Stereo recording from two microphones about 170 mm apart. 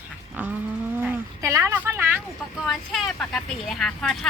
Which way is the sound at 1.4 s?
15° right (ahead or behind).